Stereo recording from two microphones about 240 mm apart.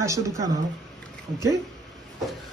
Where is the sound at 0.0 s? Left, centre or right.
Centre.